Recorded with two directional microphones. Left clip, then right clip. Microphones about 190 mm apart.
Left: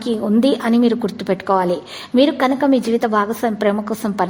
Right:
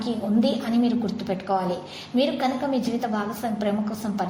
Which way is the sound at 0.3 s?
45° left (ahead or behind).